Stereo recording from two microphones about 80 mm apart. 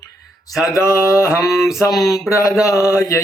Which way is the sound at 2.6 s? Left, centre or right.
Left.